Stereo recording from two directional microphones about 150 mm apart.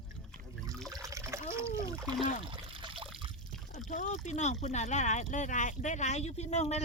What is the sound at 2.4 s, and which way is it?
Trickle, 35° right (ahead or behind).